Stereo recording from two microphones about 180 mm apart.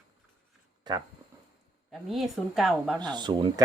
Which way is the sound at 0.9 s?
25° right (ahead or behind).